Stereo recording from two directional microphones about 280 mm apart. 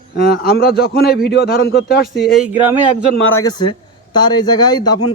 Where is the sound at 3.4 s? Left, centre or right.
Centre.